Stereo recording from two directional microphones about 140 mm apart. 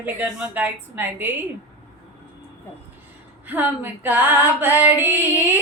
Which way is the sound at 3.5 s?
15° right (ahead or behind).